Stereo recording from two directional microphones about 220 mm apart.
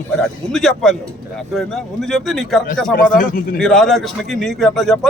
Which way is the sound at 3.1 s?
40° left (ahead or behind).